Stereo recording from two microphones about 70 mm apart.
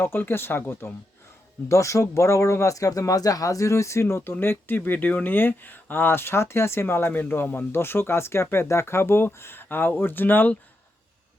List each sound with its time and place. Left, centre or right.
0.0 s speech: left
1.6 s speech: left